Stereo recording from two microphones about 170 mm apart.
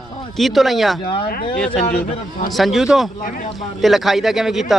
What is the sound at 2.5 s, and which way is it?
Speech, centre (ahead or behind).